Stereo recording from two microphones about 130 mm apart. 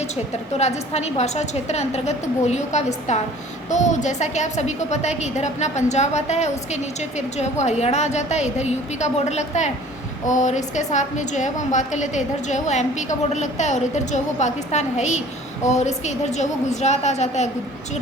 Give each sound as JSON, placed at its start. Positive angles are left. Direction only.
{"t": 0.5, "sound": "a woman's voice", "side_deg": 55}
{"t": 7.6, "sound": "a woman's voice", "side_deg": 60}